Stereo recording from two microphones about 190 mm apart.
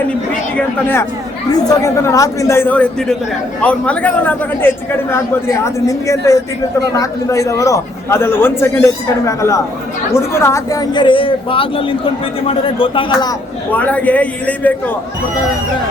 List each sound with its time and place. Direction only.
0.5 s a man's voice: 10° left (ahead or behind); by 13.3 s 25° left (ahead or behind)
13.7 s a man's voice: 10° left (ahead or behind)